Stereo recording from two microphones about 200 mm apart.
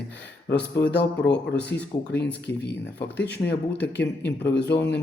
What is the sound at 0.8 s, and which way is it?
Speech, 60° left (ahead or behind).